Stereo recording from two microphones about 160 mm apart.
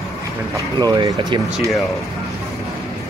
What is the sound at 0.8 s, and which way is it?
Speech, 25° right (ahead or behind).